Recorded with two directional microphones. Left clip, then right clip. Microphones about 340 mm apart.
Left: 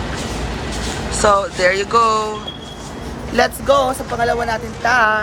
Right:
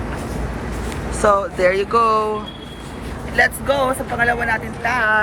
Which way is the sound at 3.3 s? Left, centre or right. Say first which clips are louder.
Left 2 dB; centre.